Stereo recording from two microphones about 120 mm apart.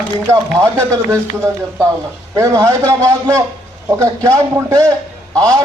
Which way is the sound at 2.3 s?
25° right (ahead or behind).